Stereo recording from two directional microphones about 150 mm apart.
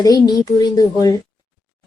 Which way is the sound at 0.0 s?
25° left (ahead or behind).